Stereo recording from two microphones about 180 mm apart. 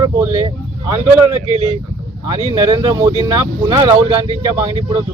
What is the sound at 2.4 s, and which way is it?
Speech, 20° right (ahead or behind).